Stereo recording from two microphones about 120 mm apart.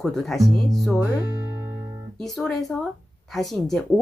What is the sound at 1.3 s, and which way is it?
Music, 20° right (ahead or behind).